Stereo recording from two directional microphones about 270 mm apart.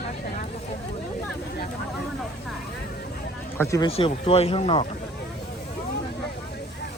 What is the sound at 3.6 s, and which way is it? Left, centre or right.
Speech, centre.